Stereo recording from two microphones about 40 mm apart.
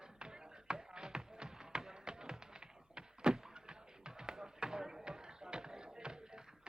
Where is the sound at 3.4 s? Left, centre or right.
Centre.